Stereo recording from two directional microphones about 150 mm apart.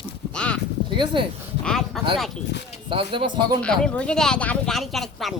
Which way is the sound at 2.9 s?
35° right (ahead or behind).